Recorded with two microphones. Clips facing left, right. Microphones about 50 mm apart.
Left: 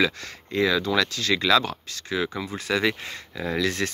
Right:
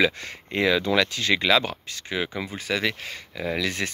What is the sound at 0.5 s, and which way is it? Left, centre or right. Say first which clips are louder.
Speech: right 1 dB; right.